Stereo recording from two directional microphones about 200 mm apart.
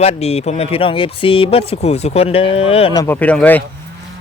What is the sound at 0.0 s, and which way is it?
Speech, 30° left (ahead or behind).